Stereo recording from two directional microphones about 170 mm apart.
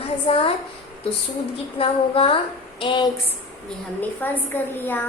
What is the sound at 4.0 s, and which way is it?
A woman's voice, 10° left (ahead or behind).